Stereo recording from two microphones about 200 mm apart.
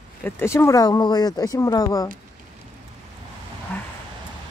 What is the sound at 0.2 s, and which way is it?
Speech, 10° left (ahead or behind).